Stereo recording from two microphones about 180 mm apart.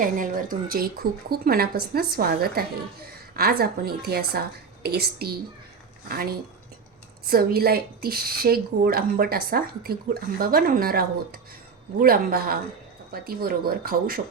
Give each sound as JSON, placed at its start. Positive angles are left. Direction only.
{"t": 0.0, "sound": "a woman's voice", "side_deg": -50}
{"t": 7.3, "sound": "a woman's voice", "side_deg": -55}